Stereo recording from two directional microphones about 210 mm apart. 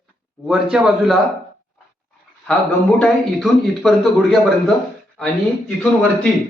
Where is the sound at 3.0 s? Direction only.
Centre (ahead or behind).